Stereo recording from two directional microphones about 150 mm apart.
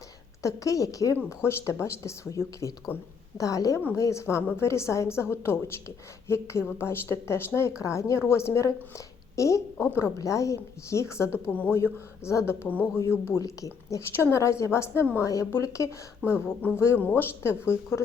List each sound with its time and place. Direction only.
0.4 s a woman's voice: 20° left (ahead or behind)